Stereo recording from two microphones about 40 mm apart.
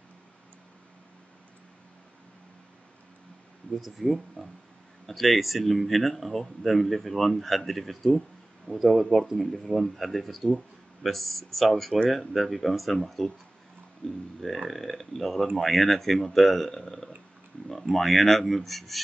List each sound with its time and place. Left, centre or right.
3.8 s speech: centre